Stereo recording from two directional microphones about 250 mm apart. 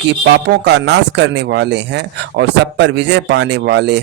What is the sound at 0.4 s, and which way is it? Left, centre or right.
Speech, right.